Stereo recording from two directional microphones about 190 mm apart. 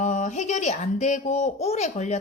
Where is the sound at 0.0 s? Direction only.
40° left (ahead or behind).